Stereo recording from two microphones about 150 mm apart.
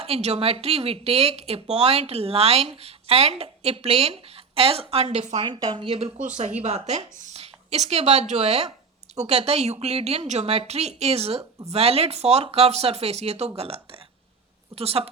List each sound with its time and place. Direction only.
0.0 s speech: 45° right (ahead or behind)
5.4 s a woman's voice: 30° right (ahead or behind)
6.1 s a woman's voice: 55° right (ahead or behind); by 15.1 s 40° right (ahead or behind)